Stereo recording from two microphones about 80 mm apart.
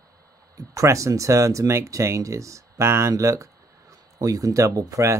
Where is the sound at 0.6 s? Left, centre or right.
Right.